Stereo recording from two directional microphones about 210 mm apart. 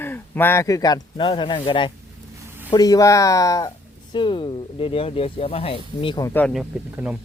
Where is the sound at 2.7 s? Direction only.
15° left (ahead or behind).